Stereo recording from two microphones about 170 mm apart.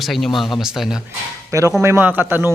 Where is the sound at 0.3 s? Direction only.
25° left (ahead or behind).